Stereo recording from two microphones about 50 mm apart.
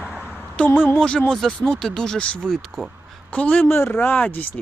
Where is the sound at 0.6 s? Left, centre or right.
Left.